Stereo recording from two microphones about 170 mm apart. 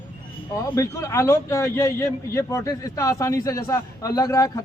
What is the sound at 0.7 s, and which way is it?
A man's voice, 15° left (ahead or behind).